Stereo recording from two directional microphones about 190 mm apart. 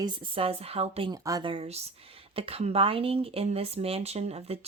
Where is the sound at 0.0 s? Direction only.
30° right (ahead or behind).